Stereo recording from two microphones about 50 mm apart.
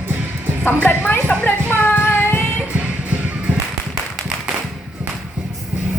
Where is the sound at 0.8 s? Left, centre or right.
Left.